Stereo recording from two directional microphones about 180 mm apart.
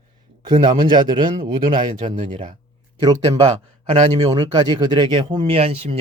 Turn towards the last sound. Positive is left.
turn(degrees=-35)  # may be behind; listen again after turning